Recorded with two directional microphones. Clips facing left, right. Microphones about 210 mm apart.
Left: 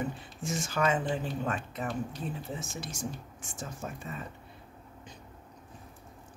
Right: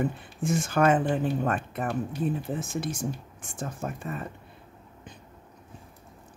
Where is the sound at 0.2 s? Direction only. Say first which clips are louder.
Right 7 dB; 55° right (ahead or behind).